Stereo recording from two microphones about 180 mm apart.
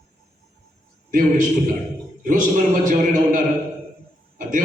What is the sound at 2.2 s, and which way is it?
A man's voice, 45° right (ahead or behind).